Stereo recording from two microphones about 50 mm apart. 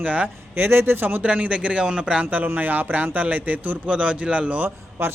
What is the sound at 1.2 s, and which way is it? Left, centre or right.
A man's voice, right.